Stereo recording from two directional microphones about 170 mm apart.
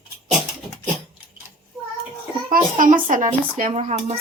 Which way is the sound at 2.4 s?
50° right (ahead or behind).